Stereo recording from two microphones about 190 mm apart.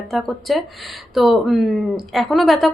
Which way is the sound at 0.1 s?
Centre (ahead or behind).